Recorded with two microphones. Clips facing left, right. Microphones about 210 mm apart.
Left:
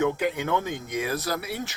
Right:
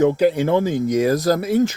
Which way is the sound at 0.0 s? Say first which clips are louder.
Right 9 dB; 35° right (ahead or behind).